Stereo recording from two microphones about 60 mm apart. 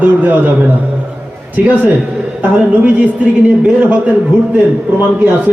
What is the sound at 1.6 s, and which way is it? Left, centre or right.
A man's voice, right.